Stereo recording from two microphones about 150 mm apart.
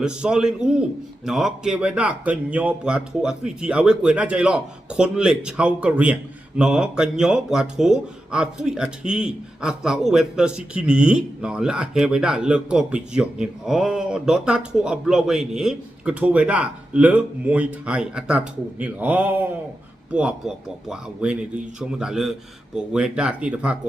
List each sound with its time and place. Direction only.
0.0 s speech: 5° right (ahead or behind)